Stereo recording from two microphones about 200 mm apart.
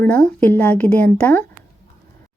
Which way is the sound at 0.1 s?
5° left (ahead or behind).